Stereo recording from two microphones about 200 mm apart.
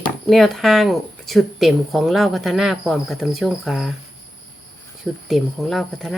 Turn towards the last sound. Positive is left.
turn(degrees=0)  # may be behind; listen again after turning